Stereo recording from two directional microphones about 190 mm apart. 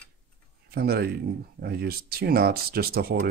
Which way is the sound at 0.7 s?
55° right (ahead or behind).